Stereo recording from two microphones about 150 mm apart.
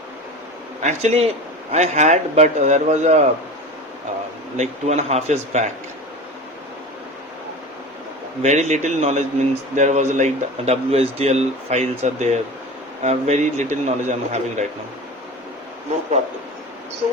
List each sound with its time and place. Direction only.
0.8 s a man's voice: 50° right (ahead or behind)
4.5 s a man's voice: 50° right (ahead or behind)
8.4 s a man's voice: 50° right (ahead or behind)